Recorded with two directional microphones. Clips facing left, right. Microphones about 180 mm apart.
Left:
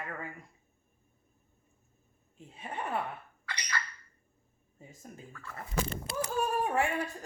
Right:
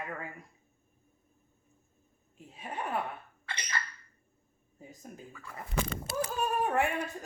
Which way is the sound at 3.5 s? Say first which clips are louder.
Even; 25° right (ahead or behind).